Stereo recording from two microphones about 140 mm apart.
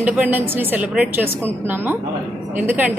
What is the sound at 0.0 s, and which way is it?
A woman's voice, 10° right (ahead or behind).